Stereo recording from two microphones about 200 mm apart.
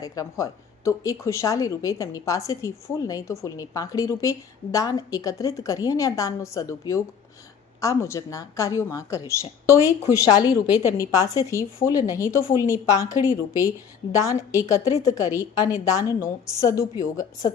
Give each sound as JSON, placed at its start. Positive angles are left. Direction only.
{"t": 0.0, "sound": "speech", "side_deg": 15}
{"t": 10.4, "sound": "a woman's voice", "side_deg": -10}
{"t": 10.9, "sound": "speech", "side_deg": 15}